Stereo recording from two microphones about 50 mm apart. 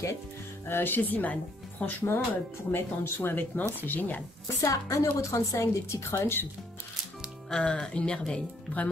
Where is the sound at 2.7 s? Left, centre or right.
Left.